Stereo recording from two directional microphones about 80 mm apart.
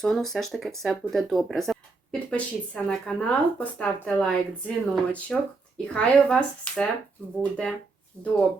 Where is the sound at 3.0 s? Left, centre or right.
Centre.